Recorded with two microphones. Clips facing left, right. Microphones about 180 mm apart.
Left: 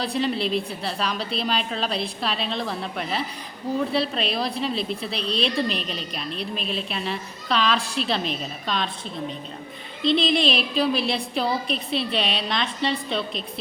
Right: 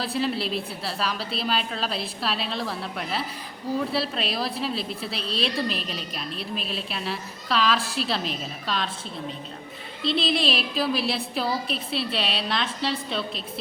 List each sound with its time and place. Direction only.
0.0 s a woman's voice: 5° right (ahead or behind)
10.0 s a woman's voice: 5° right (ahead or behind)